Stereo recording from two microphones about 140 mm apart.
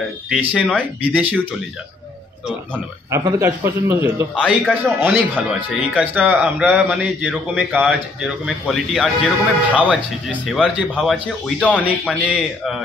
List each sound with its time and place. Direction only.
0.6 s a man's voice: 10° right (ahead or behind)
3.1 s a man's voice: 20° right (ahead or behind)
4.4 s a man's voice: 5° right (ahead or behind)